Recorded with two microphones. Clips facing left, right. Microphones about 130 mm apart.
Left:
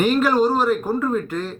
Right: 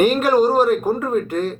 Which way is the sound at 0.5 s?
45° right (ahead or behind).